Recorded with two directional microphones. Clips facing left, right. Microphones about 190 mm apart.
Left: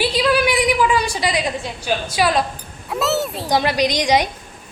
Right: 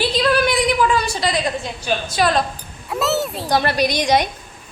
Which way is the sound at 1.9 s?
10° left (ahead or behind).